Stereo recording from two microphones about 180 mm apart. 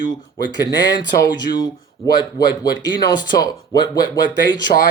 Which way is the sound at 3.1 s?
20° left (ahead or behind).